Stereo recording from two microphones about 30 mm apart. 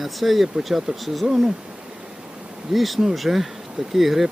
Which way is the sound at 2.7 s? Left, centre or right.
Centre.